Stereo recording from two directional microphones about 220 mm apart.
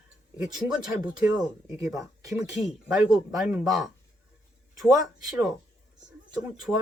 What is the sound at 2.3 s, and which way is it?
Speech, centre (ahead or behind).